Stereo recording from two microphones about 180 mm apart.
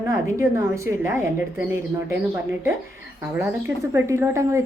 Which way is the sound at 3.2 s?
10° right (ahead or behind).